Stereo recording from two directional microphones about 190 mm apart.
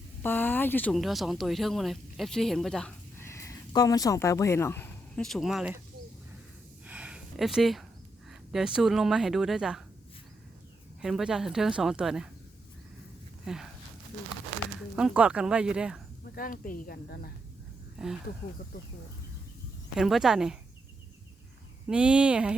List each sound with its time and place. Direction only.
0.2 s speech: 10° left (ahead or behind)
6.8 s a sound: 5° right (ahead or behind)
8.3 s a woman's voice: 5° right (ahead or behind)
11.0 s a woman's voice: 5° right (ahead or behind)
13.4 s speech: centre (ahead or behind)
14.9 s a woman's voice: 5° right (ahead or behind)
16.2 s speech: 50° left (ahead or behind)
17.9 s speech: 5° right (ahead or behind)
20.0 s a woman's voice: centre (ahead or behind)
21.8 s a woman's voice: 5° right (ahead or behind)